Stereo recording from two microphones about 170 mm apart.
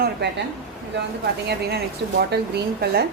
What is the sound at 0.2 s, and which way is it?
Speech, 75° right (ahead or behind).